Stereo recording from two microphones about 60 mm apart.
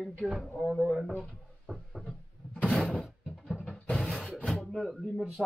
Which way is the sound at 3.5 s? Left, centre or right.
Centre.